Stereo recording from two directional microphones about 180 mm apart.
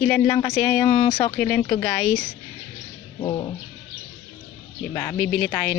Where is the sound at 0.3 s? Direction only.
25° left (ahead or behind).